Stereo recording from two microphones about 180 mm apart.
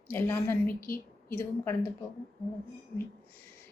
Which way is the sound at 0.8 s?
55° left (ahead or behind).